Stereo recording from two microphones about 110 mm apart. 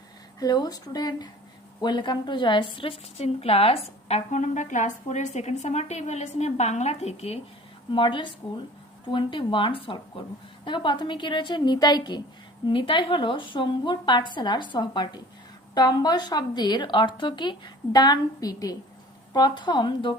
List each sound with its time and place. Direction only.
0.3 s a woman's voice: 35° left (ahead or behind); by 7.3 s 75° left (ahead or behind)
7.9 s a woman's voice: 50° left (ahead or behind)
10.7 s a woman's voice: 45° left (ahead or behind)